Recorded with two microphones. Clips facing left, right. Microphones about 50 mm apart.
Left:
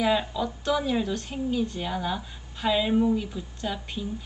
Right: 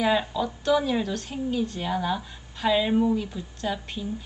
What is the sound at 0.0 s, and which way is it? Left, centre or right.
A woman's voice, centre.